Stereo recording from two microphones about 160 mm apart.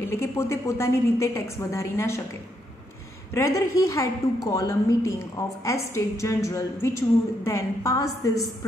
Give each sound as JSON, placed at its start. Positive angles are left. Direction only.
{"t": 0.0, "sound": "a woman's voice", "side_deg": 15}
{"t": 3.3, "sound": "a woman's voice", "side_deg": 20}